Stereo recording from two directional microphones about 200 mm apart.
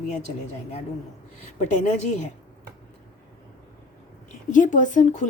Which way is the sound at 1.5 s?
35° left (ahead or behind).